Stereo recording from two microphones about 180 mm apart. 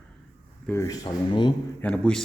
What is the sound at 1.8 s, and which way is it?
Speech, 5° left (ahead or behind).